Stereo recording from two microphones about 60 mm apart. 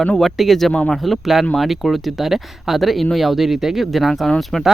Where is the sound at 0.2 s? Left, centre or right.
Centre.